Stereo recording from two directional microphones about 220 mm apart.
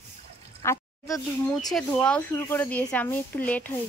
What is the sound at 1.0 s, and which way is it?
Speech, centre (ahead or behind).